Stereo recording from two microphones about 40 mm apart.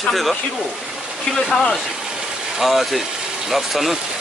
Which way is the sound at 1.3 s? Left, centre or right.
Centre.